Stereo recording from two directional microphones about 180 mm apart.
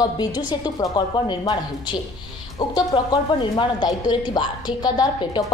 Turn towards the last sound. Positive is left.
turn(degrees=20)  # may be behind; listen again after turning